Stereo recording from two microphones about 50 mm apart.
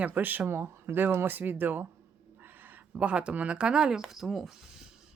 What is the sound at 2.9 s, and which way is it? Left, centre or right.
Speech, right.